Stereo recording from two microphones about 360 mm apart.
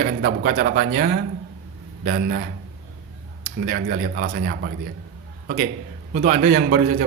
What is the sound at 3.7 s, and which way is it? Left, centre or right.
A man's voice, right.